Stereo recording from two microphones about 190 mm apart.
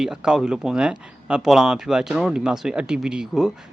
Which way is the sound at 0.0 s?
5° right (ahead or behind).